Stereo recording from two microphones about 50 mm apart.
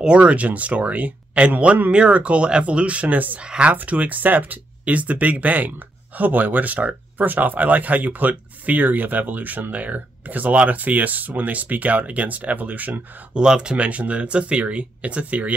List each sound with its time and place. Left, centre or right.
0.0 s speech: right
3.4 s speech: right
13.3 s speech: centre